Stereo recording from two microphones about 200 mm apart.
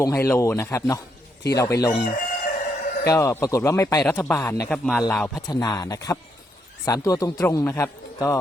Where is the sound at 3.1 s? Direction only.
15° left (ahead or behind).